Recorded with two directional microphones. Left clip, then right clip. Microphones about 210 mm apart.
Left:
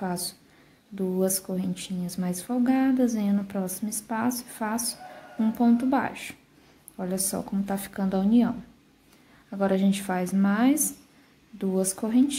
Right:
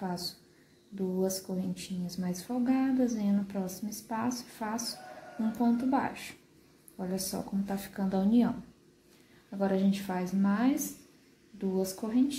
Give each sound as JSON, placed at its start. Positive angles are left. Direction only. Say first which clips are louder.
{"t": 0.0, "sound": "a woman's voice", "louder": "left 5 dB", "side_deg": 20}